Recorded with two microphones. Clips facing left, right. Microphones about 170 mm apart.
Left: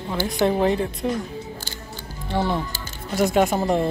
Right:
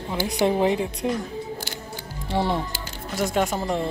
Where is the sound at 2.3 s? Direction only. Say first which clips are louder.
Left 1 dB; centre (ahead or behind).